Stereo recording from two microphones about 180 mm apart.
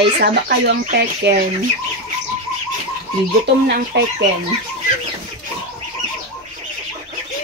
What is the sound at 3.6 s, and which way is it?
Speech, 60° right (ahead or behind).